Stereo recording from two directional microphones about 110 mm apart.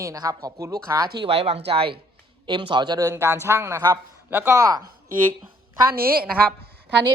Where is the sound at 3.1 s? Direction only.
25° right (ahead or behind).